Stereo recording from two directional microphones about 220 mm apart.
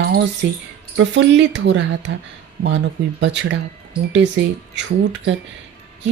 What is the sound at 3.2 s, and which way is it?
Speech, 55° right (ahead or behind).